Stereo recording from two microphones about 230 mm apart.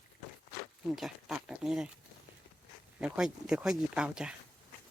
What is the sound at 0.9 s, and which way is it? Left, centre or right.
Speech, centre.